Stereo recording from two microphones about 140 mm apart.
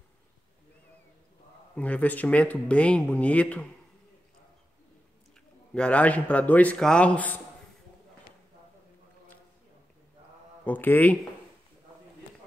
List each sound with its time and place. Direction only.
1.8 s speech: 10° left (ahead or behind)
5.8 s speech: 10° left (ahead or behind)
10.6 s speech: 10° left (ahead or behind)